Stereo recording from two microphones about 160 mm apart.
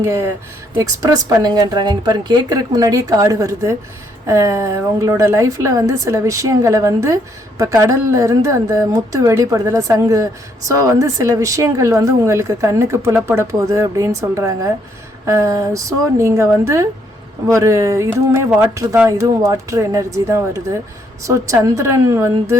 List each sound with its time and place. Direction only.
0.0 s a woman's voice: 20° right (ahead or behind)